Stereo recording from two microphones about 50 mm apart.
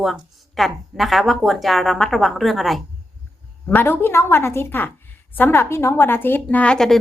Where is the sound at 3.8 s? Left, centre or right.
Left.